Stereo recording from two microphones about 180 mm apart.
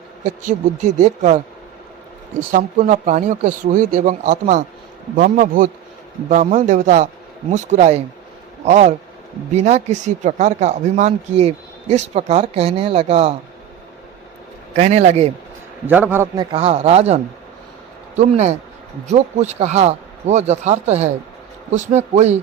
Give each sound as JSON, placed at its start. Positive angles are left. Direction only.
{"t": 0.4, "sound": "speech", "side_deg": -45}
{"t": 2.5, "sound": "speech", "side_deg": -45}
{"t": 14.8, "sound": "speech", "side_deg": -35}
{"t": 15.9, "sound": "a man's voice", "side_deg": -10}
{"t": 16.5, "sound": "speech", "side_deg": -35}
{"t": 18.2, "sound": "speech", "side_deg": -40}